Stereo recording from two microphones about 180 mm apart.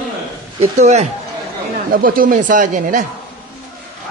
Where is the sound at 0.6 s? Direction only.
40° right (ahead or behind).